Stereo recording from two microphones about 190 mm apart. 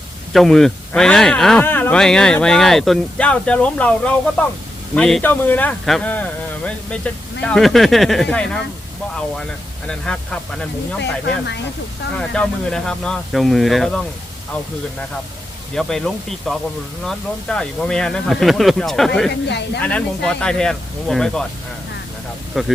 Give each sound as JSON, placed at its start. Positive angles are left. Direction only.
{"t": 0.3, "sound": "a man's voice", "side_deg": 0}
{"t": 9.8, "sound": "speech", "side_deg": 5}
{"t": 11.0, "sound": "speech", "side_deg": 65}
{"t": 12.1, "sound": "speech", "side_deg": 5}
{"t": 15.7, "sound": "speech", "side_deg": 0}
{"t": 19.5, "sound": "speech", "side_deg": 65}
{"t": 19.8, "sound": "speech", "side_deg": 5}
{"t": 22.5, "sound": "speech", "side_deg": 0}